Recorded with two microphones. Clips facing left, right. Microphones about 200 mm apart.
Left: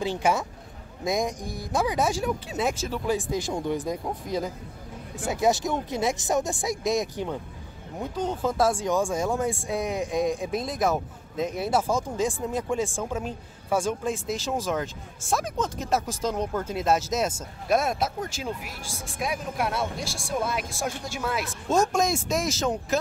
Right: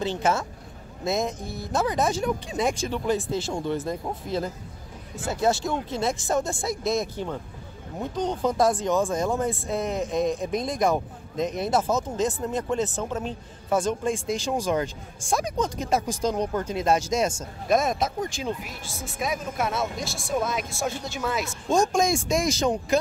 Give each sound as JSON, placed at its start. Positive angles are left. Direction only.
{"t": 0.0, "sound": "speech", "side_deg": 10}